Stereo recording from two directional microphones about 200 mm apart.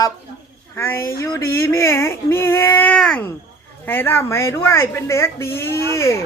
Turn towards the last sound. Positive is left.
turn(degrees=15)  # may be behind; listen again after turning